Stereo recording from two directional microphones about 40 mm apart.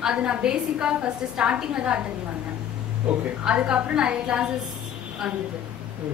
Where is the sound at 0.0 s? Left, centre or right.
Right.